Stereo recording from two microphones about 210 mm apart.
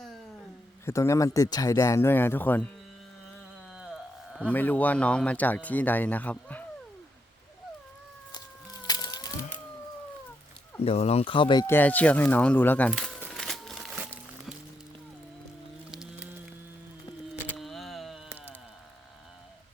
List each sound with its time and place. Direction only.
0.9 s speech: 15° left (ahead or behind)
3.7 s speech: 5° right (ahead or behind)
8.3 s a sound: 20° left (ahead or behind)
10.8 s speech: 30° left (ahead or behind)
11.6 s speech: 10° left (ahead or behind)
13.2 s music: centre (ahead or behind)
15.9 s music: centre (ahead or behind)
17.4 s a sound: centre (ahead or behind)